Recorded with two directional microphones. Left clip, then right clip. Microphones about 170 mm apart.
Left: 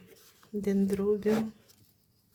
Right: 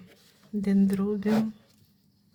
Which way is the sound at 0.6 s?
10° left (ahead or behind).